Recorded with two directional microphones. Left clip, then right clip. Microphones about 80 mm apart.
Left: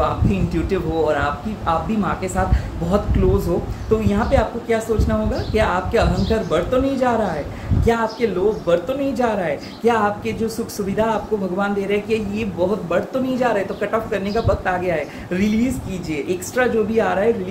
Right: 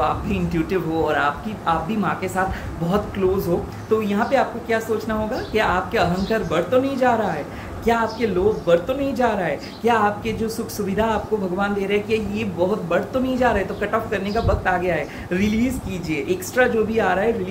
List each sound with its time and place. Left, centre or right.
0.0 s speech: left
4.0 s speech: left